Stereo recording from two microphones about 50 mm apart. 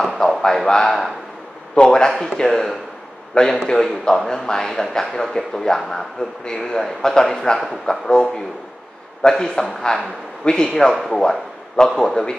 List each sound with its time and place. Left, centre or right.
0.0 s a man's voice: centre
10.4 s a man's voice: centre